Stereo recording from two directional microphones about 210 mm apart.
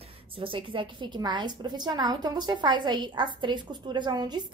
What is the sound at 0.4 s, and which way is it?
A woman's voice, 25° right (ahead or behind).